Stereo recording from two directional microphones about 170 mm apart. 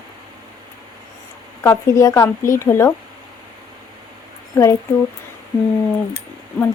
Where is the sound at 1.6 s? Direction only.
20° left (ahead or behind).